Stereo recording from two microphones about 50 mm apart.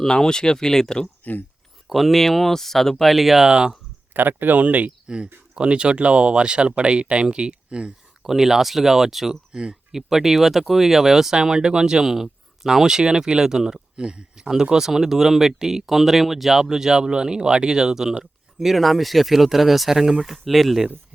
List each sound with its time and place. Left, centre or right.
0.0 s speech: centre
1.0 s speech: left
1.9 s speech: centre
3.4 s speech: centre
4.1 s speech: right
5.0 s speech: centre
8.2 s speech: centre